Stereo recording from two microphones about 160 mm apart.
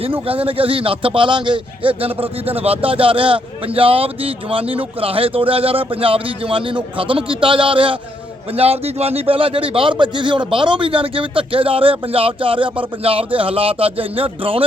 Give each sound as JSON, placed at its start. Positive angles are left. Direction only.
{"t": 0.0, "sound": "a man's voice", "side_deg": -35}